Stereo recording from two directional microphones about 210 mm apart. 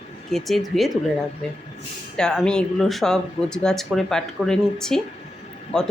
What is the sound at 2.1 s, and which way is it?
Speech, 5° left (ahead or behind).